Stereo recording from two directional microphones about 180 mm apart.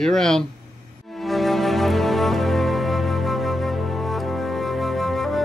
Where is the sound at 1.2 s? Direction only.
Centre (ahead or behind).